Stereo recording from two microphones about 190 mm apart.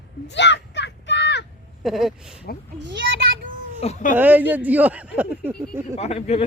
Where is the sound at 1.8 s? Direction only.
Centre (ahead or behind).